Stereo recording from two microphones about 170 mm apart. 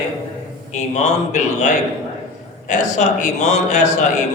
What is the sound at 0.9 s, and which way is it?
Speech, 45° left (ahead or behind).